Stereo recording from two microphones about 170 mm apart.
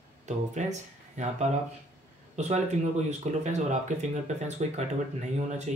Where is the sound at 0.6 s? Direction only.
45° right (ahead or behind).